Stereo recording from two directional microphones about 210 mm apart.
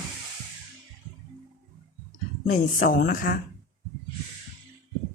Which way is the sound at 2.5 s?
40° left (ahead or behind).